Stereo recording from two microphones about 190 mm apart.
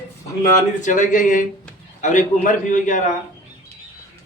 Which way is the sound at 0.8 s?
40° left (ahead or behind).